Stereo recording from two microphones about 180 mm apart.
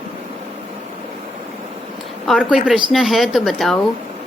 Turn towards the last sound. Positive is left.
turn(degrees=0)  # may be behind; listen again after turning